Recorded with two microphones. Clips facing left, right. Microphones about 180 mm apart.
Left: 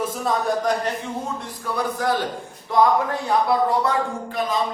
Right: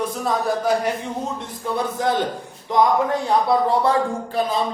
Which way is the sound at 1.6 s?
20° right (ahead or behind).